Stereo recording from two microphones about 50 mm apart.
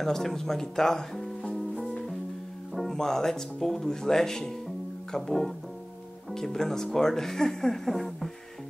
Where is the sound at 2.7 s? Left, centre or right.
Centre.